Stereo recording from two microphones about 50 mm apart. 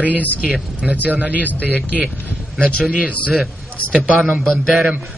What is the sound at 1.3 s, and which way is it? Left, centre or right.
Speech, left.